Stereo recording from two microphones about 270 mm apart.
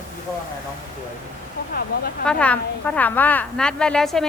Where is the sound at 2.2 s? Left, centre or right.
Centre.